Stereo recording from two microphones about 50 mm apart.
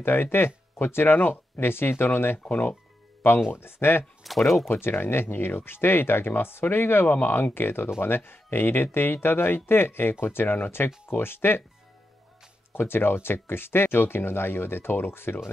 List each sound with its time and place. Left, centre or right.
0.0 s speech: left
2.4 s speech: left
3.2 s speech: left
4.2 s speech: centre
4.6 s speech: left
12.7 s speech: left